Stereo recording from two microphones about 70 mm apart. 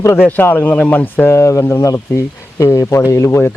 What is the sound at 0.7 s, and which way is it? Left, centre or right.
Speech, centre.